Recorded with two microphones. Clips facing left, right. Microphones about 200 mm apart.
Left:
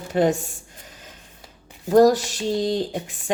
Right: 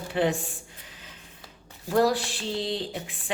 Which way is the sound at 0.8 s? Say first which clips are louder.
Left 4 dB; 45° left (ahead or behind).